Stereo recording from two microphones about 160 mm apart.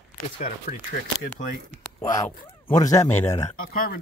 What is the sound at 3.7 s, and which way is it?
Speech, 65° left (ahead or behind).